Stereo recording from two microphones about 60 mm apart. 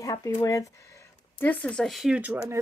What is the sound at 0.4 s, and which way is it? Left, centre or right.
Speech, left.